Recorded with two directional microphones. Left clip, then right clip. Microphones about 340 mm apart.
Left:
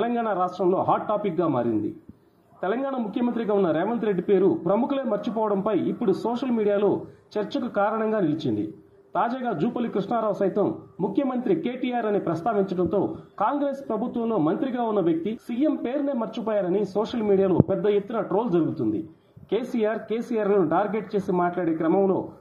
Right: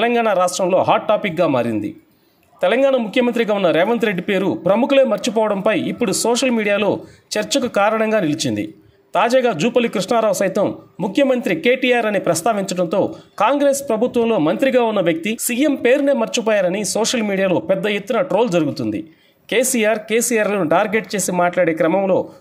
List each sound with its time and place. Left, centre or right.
0.0 s speech: right
2.9 s speech: right